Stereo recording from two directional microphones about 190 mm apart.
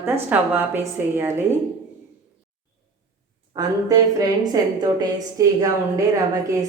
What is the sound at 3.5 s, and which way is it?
A woman's voice, 20° right (ahead or behind).